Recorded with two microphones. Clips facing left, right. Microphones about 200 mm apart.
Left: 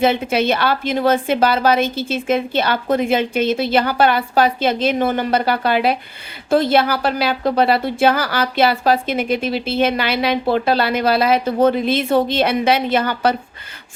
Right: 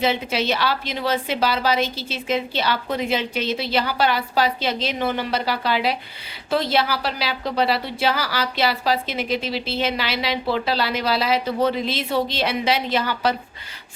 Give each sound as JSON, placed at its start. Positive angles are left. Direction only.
{"t": 0.0, "sound": "a woman's voice", "side_deg": 55}